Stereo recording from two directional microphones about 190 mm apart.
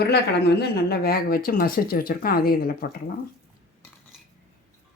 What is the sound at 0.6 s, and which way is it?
Speech, 55° left (ahead or behind).